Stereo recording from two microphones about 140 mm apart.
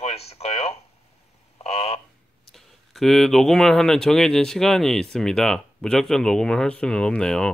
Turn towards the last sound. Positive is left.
turn(degrees=5)  # may be behind; listen again after turning